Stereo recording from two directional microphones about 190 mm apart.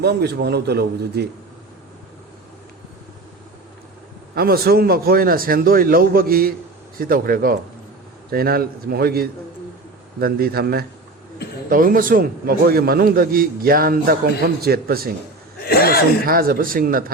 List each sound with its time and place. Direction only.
0.0 s a man's voice: 60° right (ahead or behind)
4.4 s a man's voice: 55° right (ahead or behind)
15.6 s speech: 55° left (ahead or behind)
16.2 s a man's voice: 50° right (ahead or behind)